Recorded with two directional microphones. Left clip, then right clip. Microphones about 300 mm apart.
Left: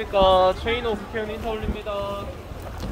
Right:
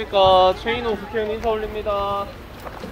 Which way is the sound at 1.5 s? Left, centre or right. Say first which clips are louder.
Right 9 dB; centre.